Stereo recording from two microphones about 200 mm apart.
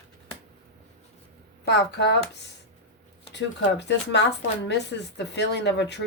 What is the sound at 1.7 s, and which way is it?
Speech, 60° left (ahead or behind).